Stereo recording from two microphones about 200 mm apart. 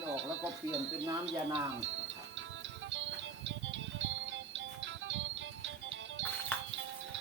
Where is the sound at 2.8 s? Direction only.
65° right (ahead or behind).